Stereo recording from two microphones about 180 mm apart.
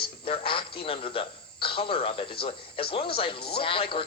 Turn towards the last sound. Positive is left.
turn(degrees=30)  # may be behind; listen again after turning